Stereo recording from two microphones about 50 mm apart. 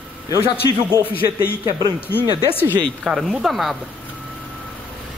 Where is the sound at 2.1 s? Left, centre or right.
Left.